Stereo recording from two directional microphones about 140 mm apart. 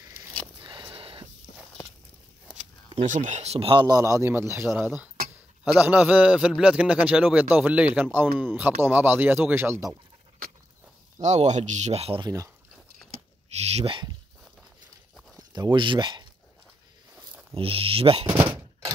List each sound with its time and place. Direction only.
0.7 s a sound: 35° right (ahead or behind)
3.1 s speech: 65° right (ahead or behind); by 4.6 s 15° right (ahead or behind)
5.8 s a man's voice: 10° right (ahead or behind)
11.1 s speech: 55° right (ahead or behind)
12.2 s speech: 20° right (ahead or behind)
13.6 s speech: 50° right (ahead or behind)
15.3 s speech: 30° right (ahead or behind)
17.6 s speech: 40° right (ahead or behind)